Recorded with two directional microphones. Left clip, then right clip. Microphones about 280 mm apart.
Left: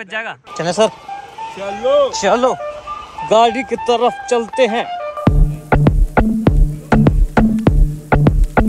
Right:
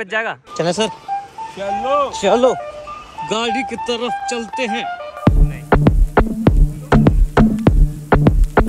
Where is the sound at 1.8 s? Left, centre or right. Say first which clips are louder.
Left 4 dB; right.